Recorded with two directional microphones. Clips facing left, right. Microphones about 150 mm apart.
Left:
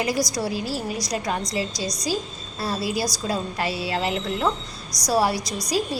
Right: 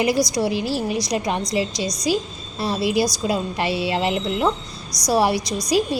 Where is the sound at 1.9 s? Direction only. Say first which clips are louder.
Right 5 dB; 30° left (ahead or behind).